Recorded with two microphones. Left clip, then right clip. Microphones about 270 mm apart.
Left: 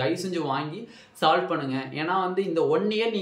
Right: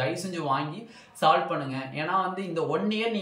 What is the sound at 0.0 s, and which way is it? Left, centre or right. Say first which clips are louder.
Speech: left 3 dB; centre.